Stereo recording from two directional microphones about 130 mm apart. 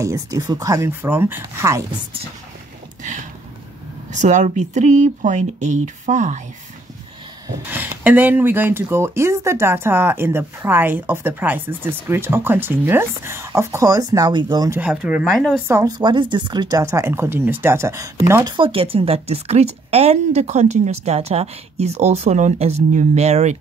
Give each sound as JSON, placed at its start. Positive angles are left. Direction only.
{"t": 0.0, "sound": "speech", "side_deg": -25}
{"t": 3.0, "sound": "a sound", "side_deg": -75}
{"t": 4.1, "sound": "speech", "side_deg": -70}
{"t": 7.7, "sound": "speech", "side_deg": -15}
{"t": 14.8, "sound": "speech", "side_deg": -10}
{"t": 15.2, "sound": "speech", "side_deg": 0}
{"t": 16.0, "sound": "speech", "side_deg": -35}
{"t": 18.6, "sound": "speech", "side_deg": -45}